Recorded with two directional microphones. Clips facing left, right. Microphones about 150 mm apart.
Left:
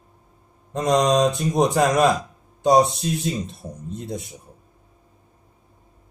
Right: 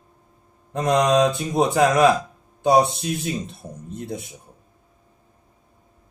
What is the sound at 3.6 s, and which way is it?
Speech, 25° right (ahead or behind).